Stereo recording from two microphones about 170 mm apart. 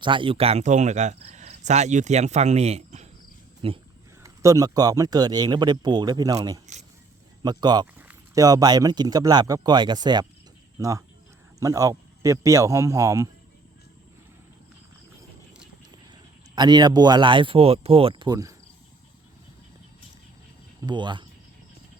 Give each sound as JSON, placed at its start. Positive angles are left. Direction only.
{"t": 0.0, "sound": "speech", "side_deg": -30}
{"t": 4.2, "sound": "speech", "side_deg": -20}
{"t": 16.6, "sound": "speech", "side_deg": -25}
{"t": 20.8, "sound": "speech", "side_deg": -25}